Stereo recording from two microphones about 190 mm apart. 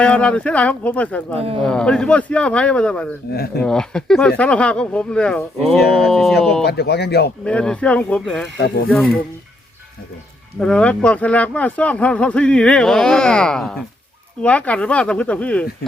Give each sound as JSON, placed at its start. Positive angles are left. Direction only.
{"t": 0.0, "sound": "speech", "side_deg": 5}
{"t": 3.3, "sound": "speech", "side_deg": 55}
{"t": 3.6, "sound": "speech", "side_deg": 5}
{"t": 6.7, "sound": "speech", "side_deg": 60}
{"t": 7.4, "sound": "speech", "side_deg": 5}
{"t": 8.5, "sound": "speech", "side_deg": 60}
{"t": 8.9, "sound": "speech", "side_deg": 5}
{"t": 10.6, "sound": "speech", "side_deg": 5}